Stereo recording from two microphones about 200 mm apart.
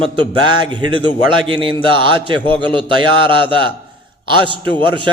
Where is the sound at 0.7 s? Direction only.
25° right (ahead or behind).